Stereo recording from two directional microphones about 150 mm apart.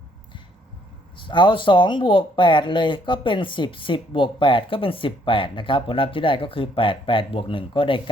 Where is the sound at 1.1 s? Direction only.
35° left (ahead or behind).